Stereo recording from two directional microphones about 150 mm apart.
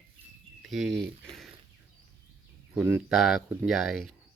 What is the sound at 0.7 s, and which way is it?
Speech, centre (ahead or behind).